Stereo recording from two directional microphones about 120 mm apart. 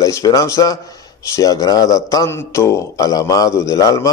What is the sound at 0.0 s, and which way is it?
Speech, 25° left (ahead or behind).